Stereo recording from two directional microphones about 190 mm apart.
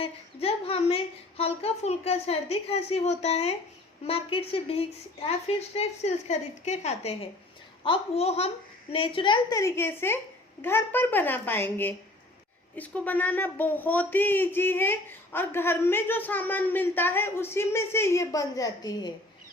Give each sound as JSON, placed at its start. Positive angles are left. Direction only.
{"t": 0.0, "sound": "a woman's voice", "side_deg": 30}